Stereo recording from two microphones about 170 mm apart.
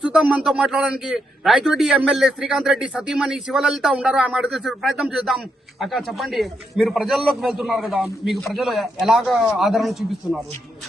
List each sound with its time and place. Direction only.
0.0 s a man's voice: 5° right (ahead or behind)